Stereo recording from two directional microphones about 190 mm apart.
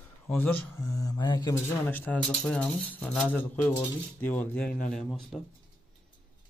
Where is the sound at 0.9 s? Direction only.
20° left (ahead or behind).